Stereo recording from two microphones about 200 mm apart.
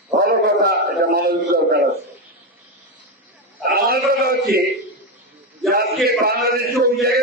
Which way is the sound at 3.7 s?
50° right (ahead or behind).